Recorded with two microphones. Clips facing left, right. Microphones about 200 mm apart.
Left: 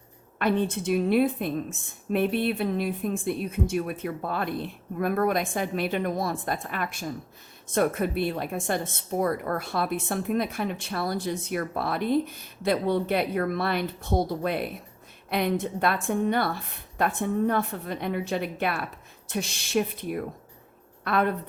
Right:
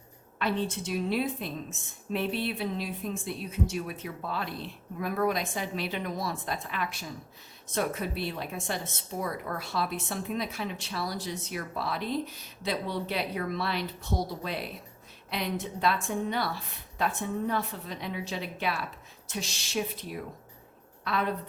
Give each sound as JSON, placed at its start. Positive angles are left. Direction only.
{"t": 0.3, "sound": "a woman's voice", "side_deg": 55}